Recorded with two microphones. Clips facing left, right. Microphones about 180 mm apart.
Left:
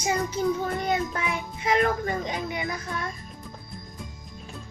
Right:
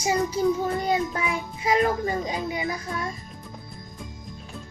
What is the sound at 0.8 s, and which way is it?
A woman's voice, 25° right (ahead or behind).